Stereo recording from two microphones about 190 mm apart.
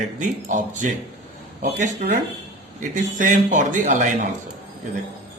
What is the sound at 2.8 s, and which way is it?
A man's voice, 40° right (ahead or behind).